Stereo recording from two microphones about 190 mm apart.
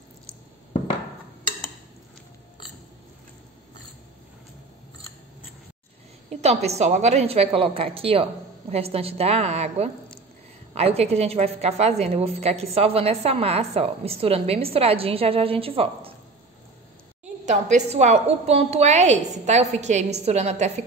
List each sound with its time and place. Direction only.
6.4 s a woman's voice: 35° right (ahead or behind)
17.5 s a woman's voice: 40° right (ahead or behind)